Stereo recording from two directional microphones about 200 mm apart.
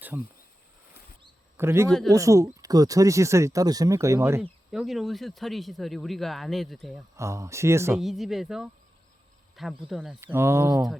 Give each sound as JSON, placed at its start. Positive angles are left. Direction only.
{"t": 0.1, "sound": "speech", "side_deg": -10}
{"t": 1.5, "sound": "speech", "side_deg": -10}
{"t": 1.9, "sound": "speech", "side_deg": 0}
{"t": 2.1, "sound": "speech", "side_deg": -15}
{"t": 4.4, "sound": "speech", "side_deg": 0}
{"t": 7.2, "sound": "speech", "side_deg": -15}
{"t": 7.9, "sound": "speech", "side_deg": 0}
{"t": 10.3, "sound": "speech", "side_deg": -10}